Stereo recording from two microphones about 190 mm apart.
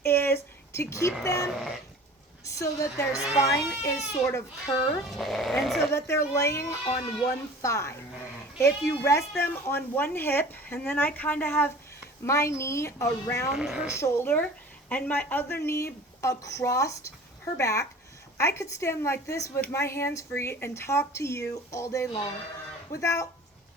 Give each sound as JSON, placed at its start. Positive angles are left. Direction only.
{"t": 0.0, "sound": "a sound", "side_deg": 10}
{"t": 0.7, "sound": "a woman's voice", "side_deg": 15}
{"t": 1.5, "sound": "speech", "side_deg": 0}
{"t": 2.4, "sound": "a woman's voice", "side_deg": 15}
{"t": 5.0, "sound": "speech", "side_deg": 0}
{"t": 5.9, "sound": "a woman's voice", "side_deg": 15}
{"t": 9.0, "sound": "a woman's voice", "side_deg": 15}
{"t": 13.5, "sound": "speech", "side_deg": -5}
{"t": 13.9, "sound": "a woman's voice", "side_deg": 15}